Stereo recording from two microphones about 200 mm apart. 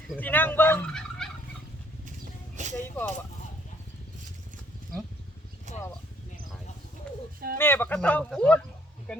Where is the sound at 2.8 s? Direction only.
10° left (ahead or behind).